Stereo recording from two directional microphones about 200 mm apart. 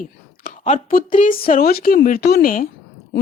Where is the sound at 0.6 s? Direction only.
40° left (ahead or behind).